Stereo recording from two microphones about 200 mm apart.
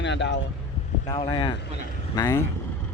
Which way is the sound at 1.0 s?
25° left (ahead or behind).